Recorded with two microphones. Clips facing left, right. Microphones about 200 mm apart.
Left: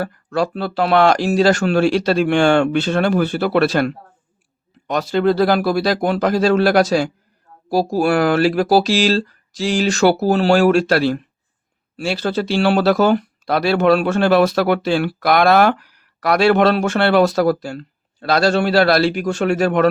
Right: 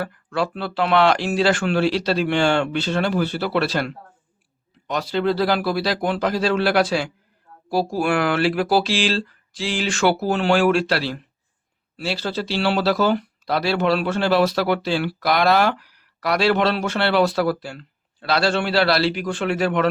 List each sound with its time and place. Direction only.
0.0 s speech: 40° left (ahead or behind)